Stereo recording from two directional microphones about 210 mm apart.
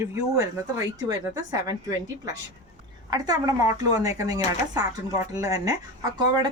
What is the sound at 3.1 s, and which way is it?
A woman's voice, 15° right (ahead or behind).